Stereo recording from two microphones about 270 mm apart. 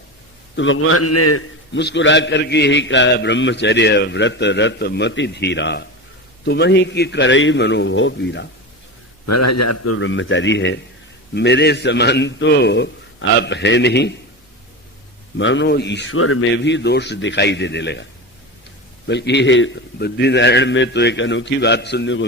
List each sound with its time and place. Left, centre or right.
0.5 s a man's voice: left
1.7 s a man's voice: left
9.2 s speech: left
10.0 s a man's voice: left
15.4 s a man's voice: left
19.0 s a man's voice: left